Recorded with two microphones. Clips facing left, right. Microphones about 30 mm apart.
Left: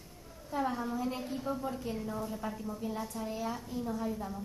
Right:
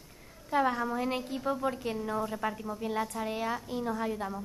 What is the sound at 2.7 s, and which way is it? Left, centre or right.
A woman's voice, right.